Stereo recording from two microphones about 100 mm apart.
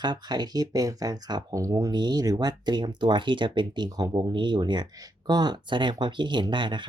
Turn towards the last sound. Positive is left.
turn(degrees=-50)  # may be behind; listen again after turning